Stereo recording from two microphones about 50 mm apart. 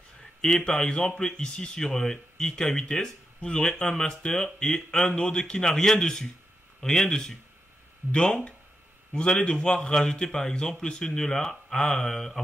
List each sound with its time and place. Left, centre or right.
0.2 s a man's voice: centre